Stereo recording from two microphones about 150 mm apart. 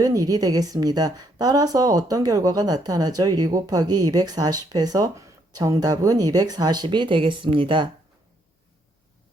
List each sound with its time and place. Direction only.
0.0 s speech: 25° right (ahead or behind)